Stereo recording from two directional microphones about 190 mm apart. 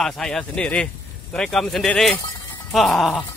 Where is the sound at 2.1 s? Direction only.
20° left (ahead or behind).